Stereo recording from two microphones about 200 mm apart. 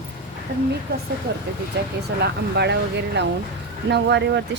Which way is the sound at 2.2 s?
55° right (ahead or behind).